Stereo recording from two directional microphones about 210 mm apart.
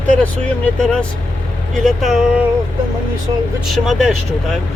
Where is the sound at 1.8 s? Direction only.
Centre (ahead or behind).